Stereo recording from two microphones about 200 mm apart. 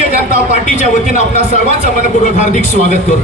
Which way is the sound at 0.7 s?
35° left (ahead or behind).